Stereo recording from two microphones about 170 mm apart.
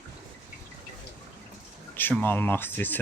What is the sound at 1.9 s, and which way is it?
Speech, 10° left (ahead or behind).